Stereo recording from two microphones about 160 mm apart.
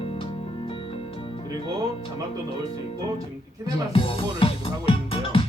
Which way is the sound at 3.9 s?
35° left (ahead or behind).